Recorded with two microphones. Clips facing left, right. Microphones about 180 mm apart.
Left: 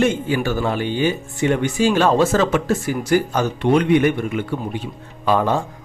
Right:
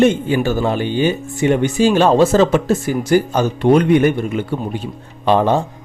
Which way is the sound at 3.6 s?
40° right (ahead or behind).